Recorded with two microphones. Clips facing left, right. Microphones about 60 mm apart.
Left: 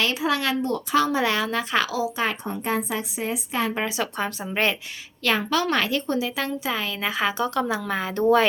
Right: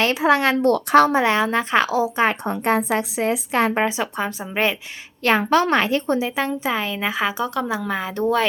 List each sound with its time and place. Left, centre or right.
0.0 s speech: right
0.6 s speech: right
1.1 s a woman's voice: right
2.4 s speech: right
3.0 s a woman's voice: right
3.8 s a woman's voice: right
4.0 s a woman's voice: centre
5.2 s a woman's voice: right; by 8.4 s centre